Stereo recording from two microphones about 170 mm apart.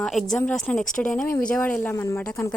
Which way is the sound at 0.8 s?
50° left (ahead or behind).